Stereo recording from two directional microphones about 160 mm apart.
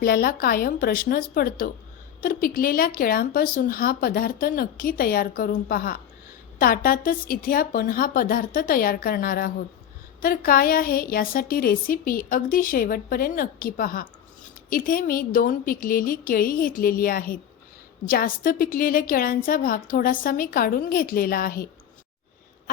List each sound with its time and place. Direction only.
0.0 s a woman's voice: 70° left (ahead or behind)